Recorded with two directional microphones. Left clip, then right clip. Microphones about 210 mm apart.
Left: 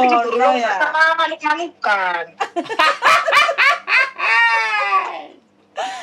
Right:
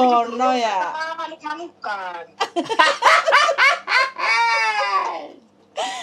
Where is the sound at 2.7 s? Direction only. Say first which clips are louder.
Left 1 dB; 5° right (ahead or behind).